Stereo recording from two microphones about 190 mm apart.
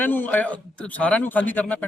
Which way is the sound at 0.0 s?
10° left (ahead or behind).